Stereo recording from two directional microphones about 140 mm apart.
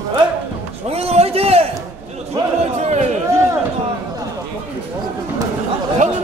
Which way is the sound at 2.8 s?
55° right (ahead or behind).